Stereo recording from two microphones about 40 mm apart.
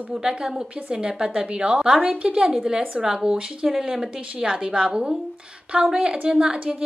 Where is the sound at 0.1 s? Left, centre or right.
Centre.